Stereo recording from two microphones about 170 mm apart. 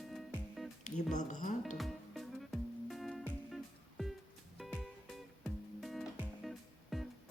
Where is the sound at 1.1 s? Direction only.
50° left (ahead or behind).